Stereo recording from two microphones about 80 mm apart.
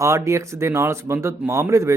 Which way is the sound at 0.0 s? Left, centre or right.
Right.